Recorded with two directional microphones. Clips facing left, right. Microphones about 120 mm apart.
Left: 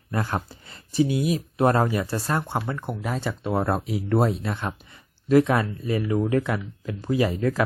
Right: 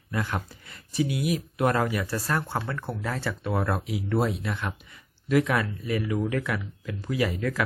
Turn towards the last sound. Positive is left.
turn(degrees=30)  # may be behind; listen again after turning